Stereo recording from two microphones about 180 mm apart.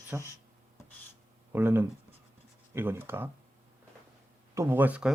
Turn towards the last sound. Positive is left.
turn(degrees=-10)  # may be behind; listen again after turning